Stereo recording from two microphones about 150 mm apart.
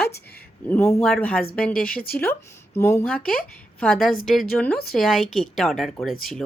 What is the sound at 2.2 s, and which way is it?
Speech, 15° left (ahead or behind).